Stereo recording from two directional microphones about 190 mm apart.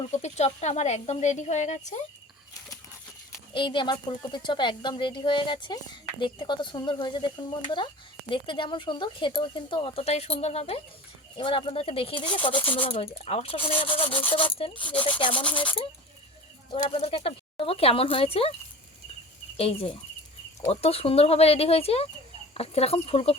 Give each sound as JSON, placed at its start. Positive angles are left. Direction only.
{"t": 0.2, "sound": "speech", "side_deg": 35}
{"t": 3.5, "sound": "speech", "side_deg": 25}
{"t": 19.5, "sound": "speech", "side_deg": 30}